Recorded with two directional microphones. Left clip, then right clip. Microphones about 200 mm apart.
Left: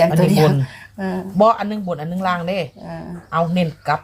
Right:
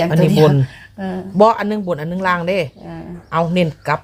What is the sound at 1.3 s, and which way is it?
A woman's voice, 55° right (ahead or behind).